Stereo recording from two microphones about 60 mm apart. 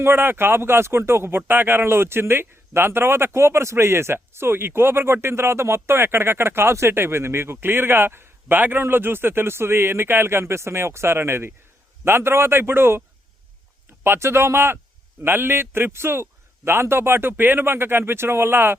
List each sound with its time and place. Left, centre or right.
0.0 s a man's voice: right
14.0 s a man's voice: right